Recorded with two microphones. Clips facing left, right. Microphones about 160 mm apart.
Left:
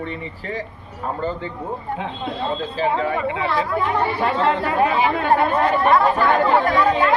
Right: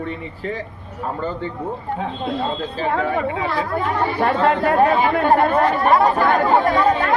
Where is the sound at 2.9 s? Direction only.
50° right (ahead or behind).